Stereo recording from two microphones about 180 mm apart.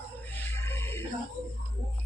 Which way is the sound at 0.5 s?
15° left (ahead or behind).